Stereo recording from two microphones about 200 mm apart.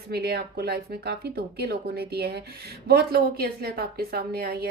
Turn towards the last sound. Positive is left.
turn(degrees=-50)  # may be behind; listen again after turning